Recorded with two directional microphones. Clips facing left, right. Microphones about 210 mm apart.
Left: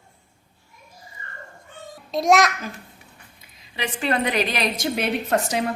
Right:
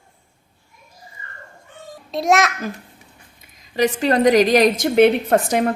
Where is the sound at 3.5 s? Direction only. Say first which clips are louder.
Right 11 dB; 45° right (ahead or behind).